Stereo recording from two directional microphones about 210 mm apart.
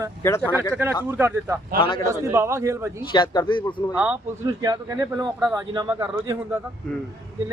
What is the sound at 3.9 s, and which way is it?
Speech, 5° right (ahead or behind).